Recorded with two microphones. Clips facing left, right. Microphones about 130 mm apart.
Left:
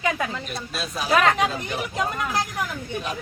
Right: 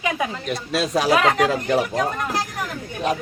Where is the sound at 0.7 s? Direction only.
90° right.